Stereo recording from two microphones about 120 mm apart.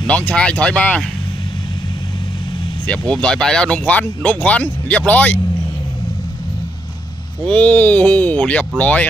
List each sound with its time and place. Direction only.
0.0 s speech: 10° left (ahead or behind)
2.9 s speech: 5° left (ahead or behind)
7.4 s speech: 10° left (ahead or behind)